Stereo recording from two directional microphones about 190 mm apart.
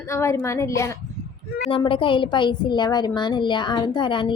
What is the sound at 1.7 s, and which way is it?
A woman's voice, 25° left (ahead or behind).